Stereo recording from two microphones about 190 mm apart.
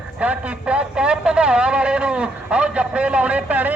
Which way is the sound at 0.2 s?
5° right (ahead or behind).